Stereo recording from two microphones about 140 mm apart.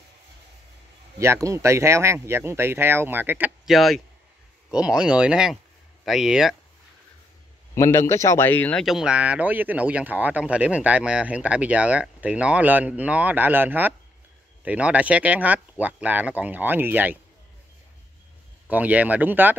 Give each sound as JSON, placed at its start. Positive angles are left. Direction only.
{"t": 1.2, "sound": "speech", "side_deg": -20}
{"t": 3.6, "sound": "speech", "side_deg": 0}
{"t": 7.7, "sound": "a man's voice", "side_deg": 20}
{"t": 8.8, "sound": "speech", "side_deg": -5}
{"t": 18.7, "sound": "speech", "side_deg": -10}